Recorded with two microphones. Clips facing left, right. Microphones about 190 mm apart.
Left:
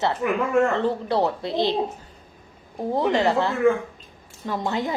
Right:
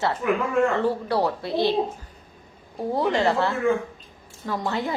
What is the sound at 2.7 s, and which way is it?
A woman's voice, 15° left (ahead or behind).